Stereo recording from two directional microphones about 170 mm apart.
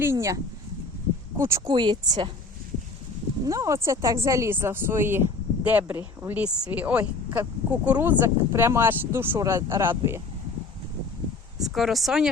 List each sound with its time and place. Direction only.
0.0 s speech: 15° right (ahead or behind)
1.4 s speech: 15° right (ahead or behind)
1.7 s speech: 25° right (ahead or behind)
3.4 s speech: 20° right (ahead or behind)
11.6 s speech: centre (ahead or behind)